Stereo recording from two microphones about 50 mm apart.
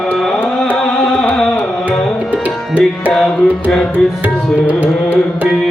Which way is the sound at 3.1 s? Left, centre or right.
Centre.